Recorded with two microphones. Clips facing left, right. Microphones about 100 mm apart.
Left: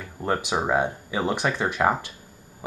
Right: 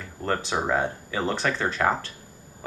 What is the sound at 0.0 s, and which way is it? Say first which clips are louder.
Speech: left 1 dB; 15° left (ahead or behind).